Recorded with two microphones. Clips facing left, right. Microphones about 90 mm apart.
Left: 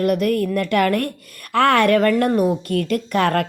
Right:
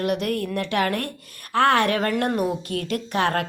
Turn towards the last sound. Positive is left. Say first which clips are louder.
# left 4 dB
turn(degrees=50)  # may be behind; listen again after turning